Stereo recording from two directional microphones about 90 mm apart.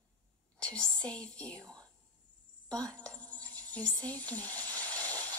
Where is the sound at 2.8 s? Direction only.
10° left (ahead or behind).